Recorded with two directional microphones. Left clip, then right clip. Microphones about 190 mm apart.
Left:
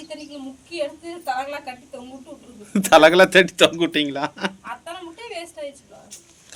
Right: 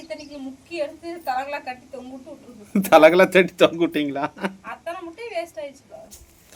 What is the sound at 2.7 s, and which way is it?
A man's voice, centre (ahead or behind).